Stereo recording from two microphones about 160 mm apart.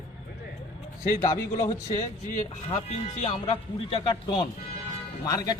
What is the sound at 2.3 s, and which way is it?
Speech, 50° left (ahead or behind).